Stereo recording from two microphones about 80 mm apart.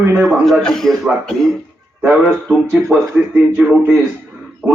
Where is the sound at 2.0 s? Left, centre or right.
Right.